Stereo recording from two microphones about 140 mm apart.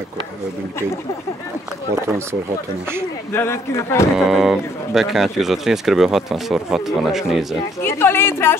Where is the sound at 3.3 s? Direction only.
20° left (ahead or behind).